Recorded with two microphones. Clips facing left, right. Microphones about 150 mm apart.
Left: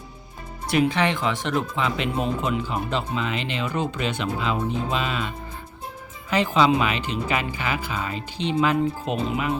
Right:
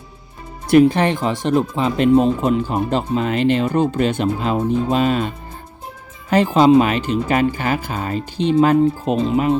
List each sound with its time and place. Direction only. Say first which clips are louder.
0.7 s speech: right 9 dB; 45° right (ahead or behind)
6.3 s speech: right 8 dB; 45° right (ahead or behind)